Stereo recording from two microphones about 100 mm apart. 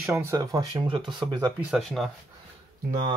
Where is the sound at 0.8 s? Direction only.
55° right (ahead or behind).